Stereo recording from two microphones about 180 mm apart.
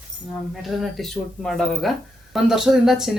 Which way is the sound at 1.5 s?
5° left (ahead or behind).